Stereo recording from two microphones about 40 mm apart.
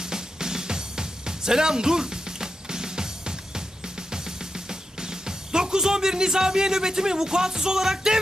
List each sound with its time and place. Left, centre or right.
0.0 s music: centre